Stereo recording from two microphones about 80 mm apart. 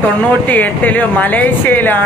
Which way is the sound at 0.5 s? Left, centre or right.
Left.